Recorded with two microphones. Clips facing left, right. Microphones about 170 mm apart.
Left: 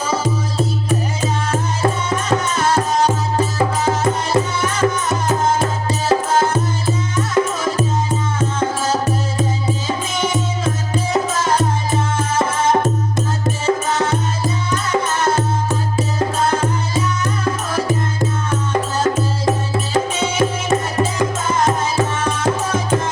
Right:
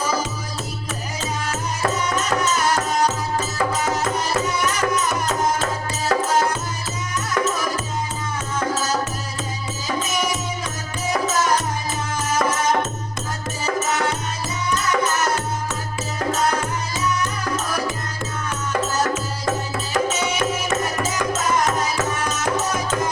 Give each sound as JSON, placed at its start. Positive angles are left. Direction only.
{"t": 1.5, "sound": "music", "side_deg": 30}
{"t": 14.7, "sound": "music", "side_deg": 25}